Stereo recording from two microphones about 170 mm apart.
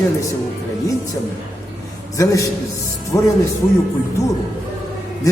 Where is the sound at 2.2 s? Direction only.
20° left (ahead or behind).